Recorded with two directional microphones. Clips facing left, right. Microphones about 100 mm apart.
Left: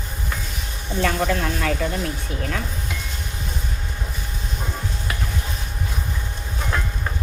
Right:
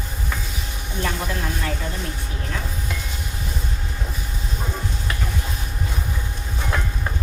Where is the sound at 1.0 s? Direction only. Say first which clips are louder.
Left 5 dB; 90° left.